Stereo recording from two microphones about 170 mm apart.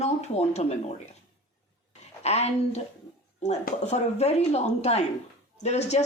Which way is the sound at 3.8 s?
40° left (ahead or behind).